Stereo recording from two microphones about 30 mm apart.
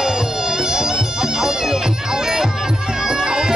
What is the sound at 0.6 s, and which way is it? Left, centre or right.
Bagpipes, right.